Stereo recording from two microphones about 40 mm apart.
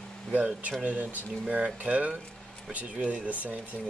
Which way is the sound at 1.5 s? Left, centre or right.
Right.